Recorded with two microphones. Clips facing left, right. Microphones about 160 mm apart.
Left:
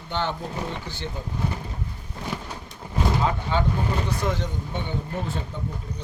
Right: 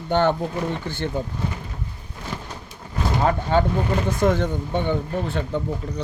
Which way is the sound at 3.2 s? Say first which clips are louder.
Right 5 dB; 50° right (ahead or behind).